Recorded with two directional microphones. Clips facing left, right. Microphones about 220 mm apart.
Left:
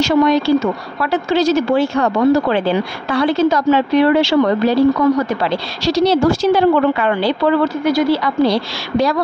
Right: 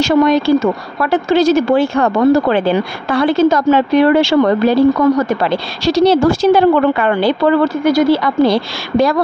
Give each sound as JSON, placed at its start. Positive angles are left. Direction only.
{"t": 0.0, "sound": "a woman's voice", "side_deg": -50}